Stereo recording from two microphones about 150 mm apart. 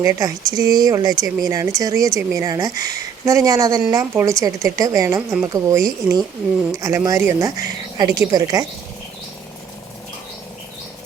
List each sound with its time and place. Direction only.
0.0 s a woman's voice: 20° right (ahead or behind)